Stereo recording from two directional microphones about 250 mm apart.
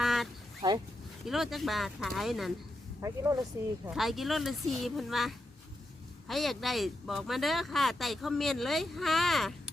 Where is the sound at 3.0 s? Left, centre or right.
Centre.